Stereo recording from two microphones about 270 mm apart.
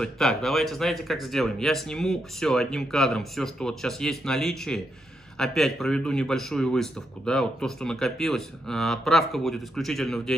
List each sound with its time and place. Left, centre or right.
0.0 s speech: centre